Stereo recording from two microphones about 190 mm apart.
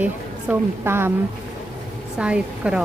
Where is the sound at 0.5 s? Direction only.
10° right (ahead or behind).